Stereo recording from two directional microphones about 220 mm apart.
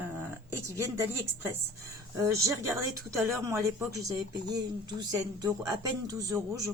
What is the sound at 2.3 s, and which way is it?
Speech, 15° right (ahead or behind).